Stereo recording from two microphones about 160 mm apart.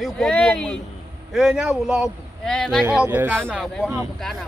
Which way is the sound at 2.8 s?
10° right (ahead or behind).